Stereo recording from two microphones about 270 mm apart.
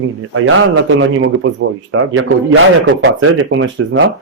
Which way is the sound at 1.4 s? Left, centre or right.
Right.